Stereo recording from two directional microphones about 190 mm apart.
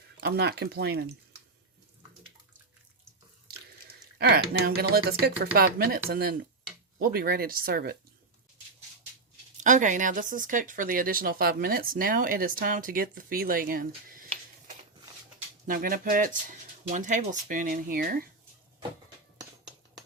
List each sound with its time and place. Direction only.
0.2 s speech: 60° right (ahead or behind)
3.8 s speech: 55° right (ahead or behind)
9.6 s speech: 40° right (ahead or behind)
15.6 s speech: 45° right (ahead or behind)